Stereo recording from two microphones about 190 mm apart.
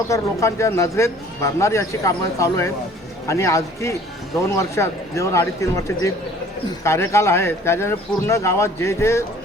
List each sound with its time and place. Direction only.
0.1 s a man's voice: 15° left (ahead or behind)